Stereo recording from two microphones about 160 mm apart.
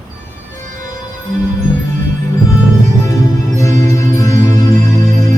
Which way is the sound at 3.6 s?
20° left (ahead or behind).